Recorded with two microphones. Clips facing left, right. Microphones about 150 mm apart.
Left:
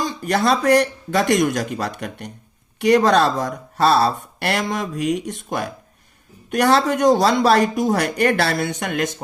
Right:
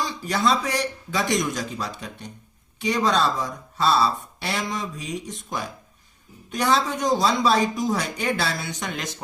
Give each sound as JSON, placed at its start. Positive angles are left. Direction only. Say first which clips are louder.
{"t": 0.0, "sound": "speech", "louder": "left 4 dB", "side_deg": 55}